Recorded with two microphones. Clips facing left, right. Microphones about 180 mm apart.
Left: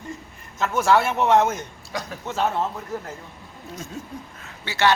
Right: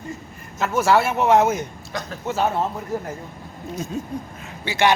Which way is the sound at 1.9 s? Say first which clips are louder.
Left 3 dB; 10° left (ahead or behind).